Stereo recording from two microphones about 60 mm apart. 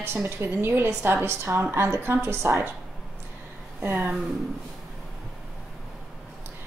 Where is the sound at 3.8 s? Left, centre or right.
Right.